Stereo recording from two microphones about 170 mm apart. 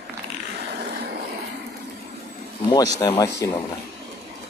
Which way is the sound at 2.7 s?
20° left (ahead or behind).